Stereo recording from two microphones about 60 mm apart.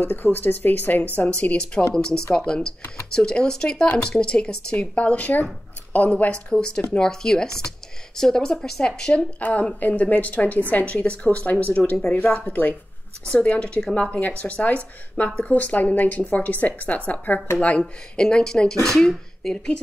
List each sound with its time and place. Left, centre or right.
0.0 s a woman's voice: left
6.5 s speech: centre
9.4 s a woman's voice: left; by 19.8 s centre